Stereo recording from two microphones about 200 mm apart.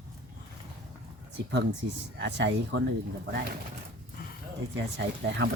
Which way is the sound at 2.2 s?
60° right (ahead or behind).